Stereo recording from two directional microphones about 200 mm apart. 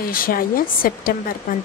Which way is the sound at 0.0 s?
45° left (ahead or behind).